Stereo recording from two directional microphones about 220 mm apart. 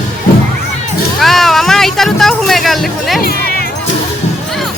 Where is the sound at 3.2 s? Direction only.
45° left (ahead or behind).